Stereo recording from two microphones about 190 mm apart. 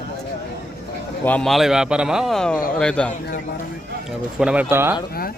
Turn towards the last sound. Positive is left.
turn(degrees=-10)  # may be behind; listen again after turning